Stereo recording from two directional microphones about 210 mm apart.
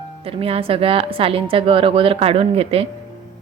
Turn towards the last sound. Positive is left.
turn(degrees=-30)  # may be behind; listen again after turning